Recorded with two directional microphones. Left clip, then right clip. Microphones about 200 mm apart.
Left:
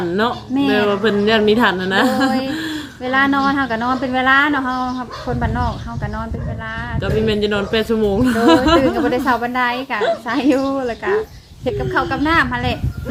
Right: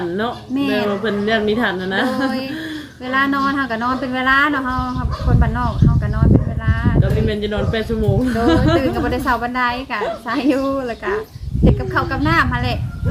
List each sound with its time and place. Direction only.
0.5 s a woman's voice: centre (ahead or behind)
0.9 s a woman's voice: 55° left (ahead or behind)
3.0 s a woman's voice: centre (ahead or behind)
7.0 s a woman's voice: 55° left (ahead or behind)
8.8 s a woman's voice: centre (ahead or behind)